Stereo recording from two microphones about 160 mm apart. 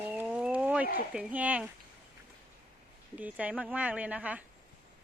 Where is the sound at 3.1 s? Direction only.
10° right (ahead or behind).